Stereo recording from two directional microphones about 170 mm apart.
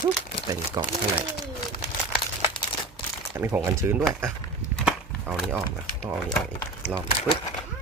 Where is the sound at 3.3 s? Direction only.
15° right (ahead or behind).